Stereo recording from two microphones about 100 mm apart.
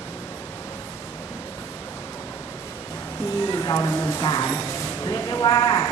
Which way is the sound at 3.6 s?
30° left (ahead or behind).